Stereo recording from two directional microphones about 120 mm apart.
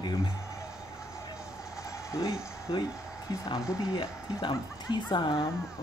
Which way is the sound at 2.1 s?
35° left (ahead or behind).